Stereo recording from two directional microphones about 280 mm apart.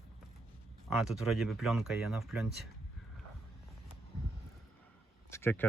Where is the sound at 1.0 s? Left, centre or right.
Centre.